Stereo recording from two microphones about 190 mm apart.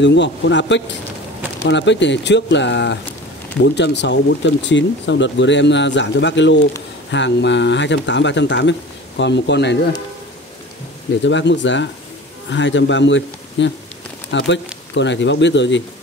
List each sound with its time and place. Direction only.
0.0 s speech: 70° left (ahead or behind)
11.2 s speech: 70° left (ahead or behind)